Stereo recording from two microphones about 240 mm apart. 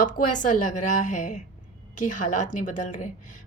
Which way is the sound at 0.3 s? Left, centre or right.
Left.